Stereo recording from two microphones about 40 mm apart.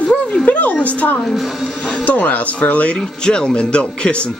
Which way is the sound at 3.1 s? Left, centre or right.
Left.